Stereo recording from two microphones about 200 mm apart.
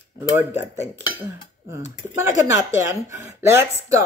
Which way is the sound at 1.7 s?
15° right (ahead or behind).